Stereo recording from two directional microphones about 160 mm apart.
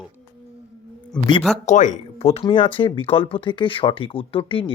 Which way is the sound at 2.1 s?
35° left (ahead or behind).